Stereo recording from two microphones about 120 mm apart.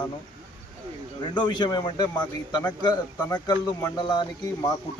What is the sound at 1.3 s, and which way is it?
Speech, 40° left (ahead or behind).